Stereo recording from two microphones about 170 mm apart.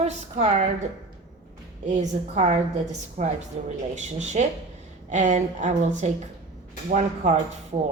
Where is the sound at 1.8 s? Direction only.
45° right (ahead or behind).